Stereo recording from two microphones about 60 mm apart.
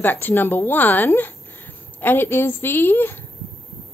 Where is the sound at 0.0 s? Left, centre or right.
Left.